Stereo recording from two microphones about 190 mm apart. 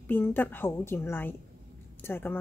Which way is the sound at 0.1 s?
10° left (ahead or behind).